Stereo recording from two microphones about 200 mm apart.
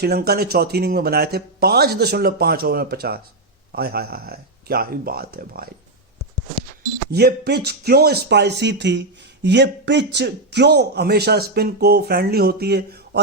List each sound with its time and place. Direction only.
0.0 s a man's voice: 55° right (ahead or behind)
7.1 s a man's voice: 55° right (ahead or behind)